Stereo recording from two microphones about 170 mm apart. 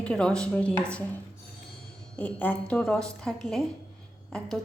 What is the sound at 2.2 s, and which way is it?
A woman's voice, 10° left (ahead or behind).